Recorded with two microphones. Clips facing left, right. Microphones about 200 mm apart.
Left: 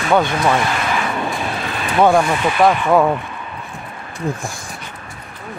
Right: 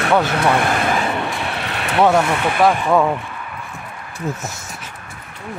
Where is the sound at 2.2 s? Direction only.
60° right (ahead or behind).